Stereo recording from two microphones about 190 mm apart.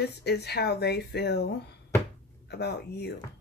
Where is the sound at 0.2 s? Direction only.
60° left (ahead or behind).